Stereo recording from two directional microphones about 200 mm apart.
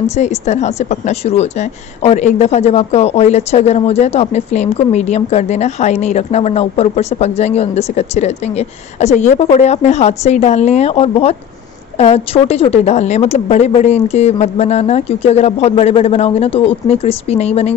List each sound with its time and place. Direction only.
0.2 s a woman's voice: 35° left (ahead or behind)